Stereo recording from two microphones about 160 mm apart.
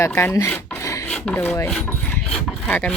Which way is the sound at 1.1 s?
5° left (ahead or behind).